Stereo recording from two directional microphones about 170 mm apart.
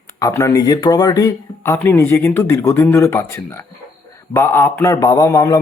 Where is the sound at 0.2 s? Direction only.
15° left (ahead or behind).